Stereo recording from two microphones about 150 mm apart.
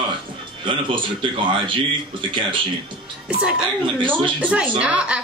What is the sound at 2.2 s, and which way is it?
Speech, 30° right (ahead or behind).